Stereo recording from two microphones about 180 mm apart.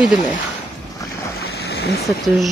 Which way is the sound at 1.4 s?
65° left (ahead or behind).